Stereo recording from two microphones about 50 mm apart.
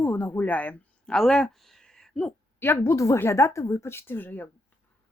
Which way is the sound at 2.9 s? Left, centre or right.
Left.